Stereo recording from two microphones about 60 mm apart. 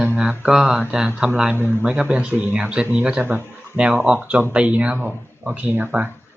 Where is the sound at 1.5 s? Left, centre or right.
Left.